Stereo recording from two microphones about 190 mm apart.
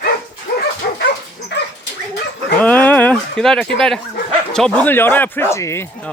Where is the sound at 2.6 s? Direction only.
10° left (ahead or behind).